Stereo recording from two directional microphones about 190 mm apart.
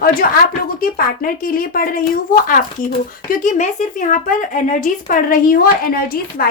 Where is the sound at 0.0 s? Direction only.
50° left (ahead or behind).